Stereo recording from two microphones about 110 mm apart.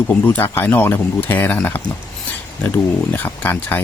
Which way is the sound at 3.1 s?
15° left (ahead or behind).